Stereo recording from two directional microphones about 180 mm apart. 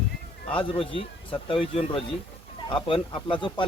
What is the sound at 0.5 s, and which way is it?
Speech, 30° left (ahead or behind).